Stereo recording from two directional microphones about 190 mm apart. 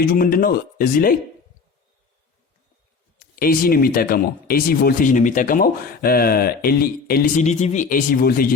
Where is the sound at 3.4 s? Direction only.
50° left (ahead or behind).